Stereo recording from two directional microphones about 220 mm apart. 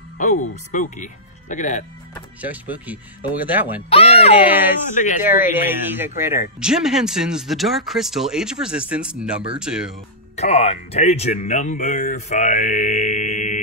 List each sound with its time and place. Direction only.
0.2 s speech: 35° left (ahead or behind)
2.4 s speech: 5° right (ahead or behind)
3.9 s speech: 25° left (ahead or behind)
4.5 s speech: 10° right (ahead or behind)
4.9 s speech: 35° left (ahead or behind)
5.2 s speech: 10° right (ahead or behind)
10.3 s speech: 30° left (ahead or behind)